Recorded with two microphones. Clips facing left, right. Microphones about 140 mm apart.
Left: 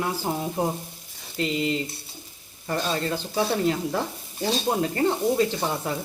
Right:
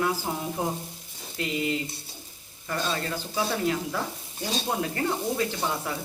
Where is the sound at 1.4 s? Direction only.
25° left (ahead or behind).